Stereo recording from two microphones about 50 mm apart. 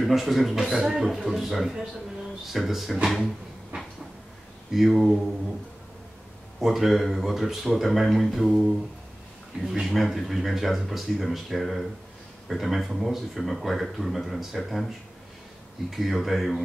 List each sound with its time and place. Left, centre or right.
0.0 s speech: centre
3.7 s cupboard open or close: right
4.7 s speech: centre
6.6 s speech: centre